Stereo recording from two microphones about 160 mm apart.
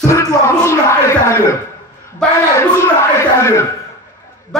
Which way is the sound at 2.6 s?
15° left (ahead or behind).